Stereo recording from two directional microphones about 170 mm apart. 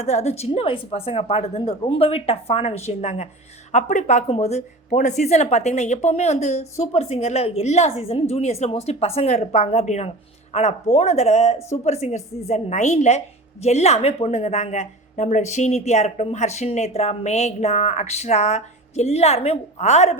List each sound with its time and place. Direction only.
0.0 s a woman's voice: 40° left (ahead or behind)